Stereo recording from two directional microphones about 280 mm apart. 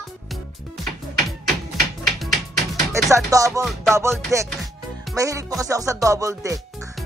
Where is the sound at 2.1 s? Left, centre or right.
Centre.